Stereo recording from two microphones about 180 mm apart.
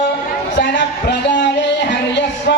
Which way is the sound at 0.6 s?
75° left (ahead or behind).